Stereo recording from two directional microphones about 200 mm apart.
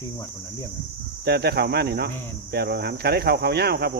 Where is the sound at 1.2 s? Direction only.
55° right (ahead or behind).